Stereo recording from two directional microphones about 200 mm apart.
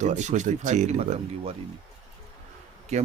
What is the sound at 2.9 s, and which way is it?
Speech, 35° right (ahead or behind).